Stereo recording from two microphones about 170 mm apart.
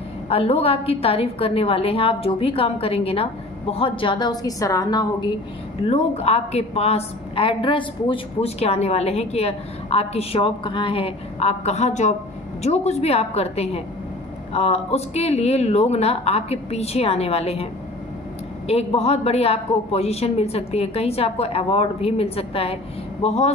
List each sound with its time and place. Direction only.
0.3 s a woman's voice: 35° left (ahead or behind)
5.9 s a woman's voice: 35° left (ahead or behind)
18.7 s a woman's voice: 35° left (ahead or behind)